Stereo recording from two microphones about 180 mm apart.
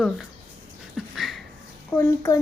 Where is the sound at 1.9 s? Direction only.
15° left (ahead or behind).